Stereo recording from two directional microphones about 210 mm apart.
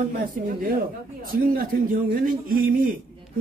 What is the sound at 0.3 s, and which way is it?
A man's voice, 40° right (ahead or behind).